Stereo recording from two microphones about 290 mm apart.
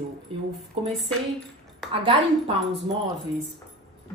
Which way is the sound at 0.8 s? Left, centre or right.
Centre.